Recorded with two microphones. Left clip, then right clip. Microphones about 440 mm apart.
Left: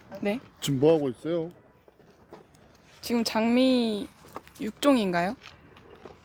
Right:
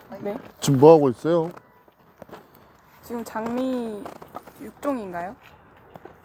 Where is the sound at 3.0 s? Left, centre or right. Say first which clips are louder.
Left 3 dB; left.